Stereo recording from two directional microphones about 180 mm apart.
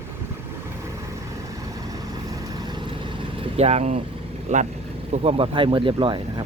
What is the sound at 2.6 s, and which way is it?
Vehicle, 25° right (ahead or behind).